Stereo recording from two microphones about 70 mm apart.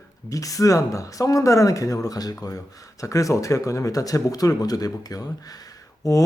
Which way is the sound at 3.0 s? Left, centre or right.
Left.